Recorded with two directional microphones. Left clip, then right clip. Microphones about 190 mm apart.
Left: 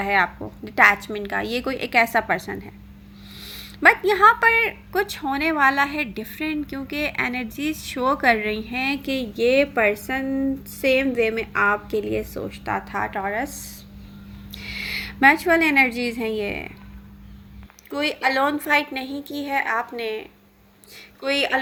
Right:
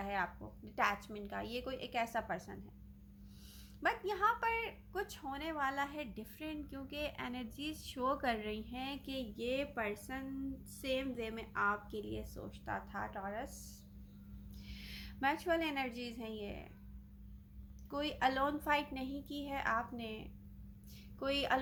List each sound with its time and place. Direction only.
0.0 s a woman's voice: 20° left (ahead or behind)
17.9 s a woman's voice: 20° left (ahead or behind)